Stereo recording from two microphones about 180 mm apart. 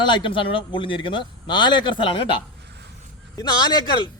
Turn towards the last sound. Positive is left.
turn(degrees=25)  # may be behind; listen again after turning